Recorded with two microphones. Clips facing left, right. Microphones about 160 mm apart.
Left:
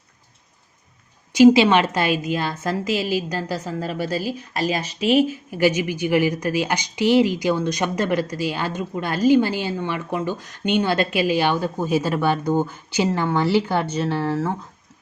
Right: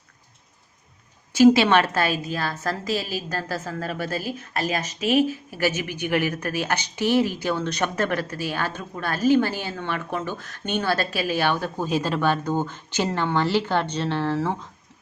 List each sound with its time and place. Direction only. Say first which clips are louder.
1.4 s a woman's voice: left 3 dB; 10° left (ahead or behind)
2.9 s a woman's voice: left 6 dB; 45° right (ahead or behind)
3.2 s a woman's voice: left 3 dB; 15° left (ahead or behind)
4.1 s a woman's voice: left 4 dB; 50° right (ahead or behind)
5.5 s a woman's voice: left 7 dB; 15° left (ahead or behind)